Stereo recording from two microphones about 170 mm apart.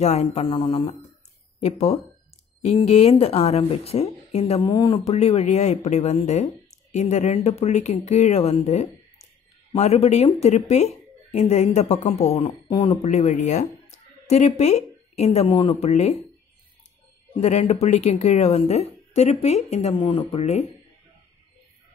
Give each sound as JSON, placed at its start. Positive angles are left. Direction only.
{"t": 0.0, "sound": "speech", "side_deg": 40}
{"t": 4.6, "sound": "speech", "side_deg": 25}
{"t": 12.6, "sound": "speech", "side_deg": 25}
{"t": 13.0, "sound": "speech", "side_deg": 40}
{"t": 17.4, "sound": "speech", "side_deg": 40}